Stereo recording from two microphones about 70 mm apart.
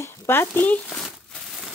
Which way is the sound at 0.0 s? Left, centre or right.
Left.